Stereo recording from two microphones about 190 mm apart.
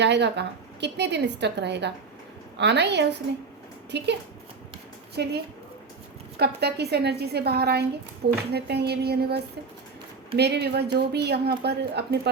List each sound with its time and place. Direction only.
0.0 s a woman's voice: 65° right (ahead or behind)